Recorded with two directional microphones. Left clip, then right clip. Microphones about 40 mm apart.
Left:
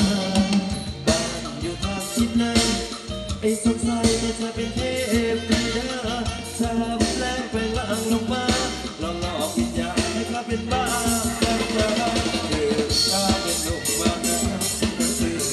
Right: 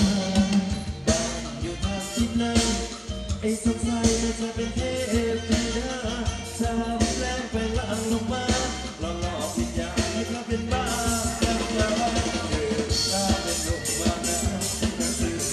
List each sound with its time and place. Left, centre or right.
0.0 s music: left; by 7.8 s centre
7.9 s music: left
9.9 s music: left